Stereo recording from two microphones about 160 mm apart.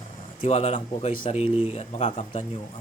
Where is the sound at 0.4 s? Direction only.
40° left (ahead or behind).